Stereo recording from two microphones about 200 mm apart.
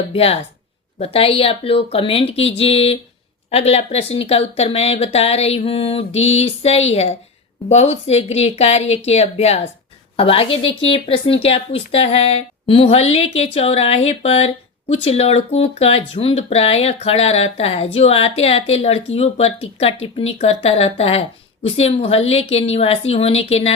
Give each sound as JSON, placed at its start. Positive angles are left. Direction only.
{"t": 0.1, "sound": "speech", "side_deg": 30}